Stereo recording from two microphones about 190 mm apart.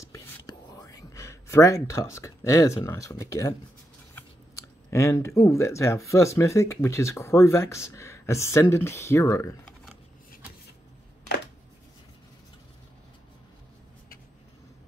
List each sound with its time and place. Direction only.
0.0 s whispering: 20° left (ahead or behind)
4.9 s speech: 15° left (ahead or behind)